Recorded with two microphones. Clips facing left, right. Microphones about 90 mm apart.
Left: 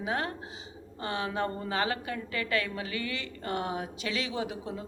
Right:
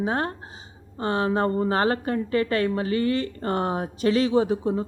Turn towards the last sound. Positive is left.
turn(degrees=-35)  # may be behind; listen again after turning